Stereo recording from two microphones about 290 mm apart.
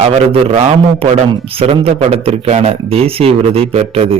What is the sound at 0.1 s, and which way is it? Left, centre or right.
Speech, centre.